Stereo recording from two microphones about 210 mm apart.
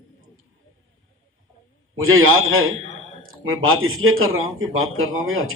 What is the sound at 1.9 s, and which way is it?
Speech, 75° right (ahead or behind).